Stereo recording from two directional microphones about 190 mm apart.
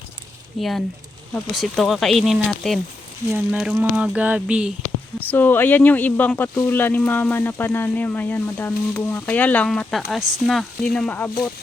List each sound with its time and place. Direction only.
0.6 s speech: centre (ahead or behind)
5.3 s speech: 10° left (ahead or behind)